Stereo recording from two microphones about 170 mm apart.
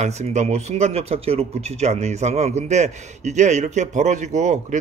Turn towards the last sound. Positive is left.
turn(degrees=-45)  # may be behind; listen again after turning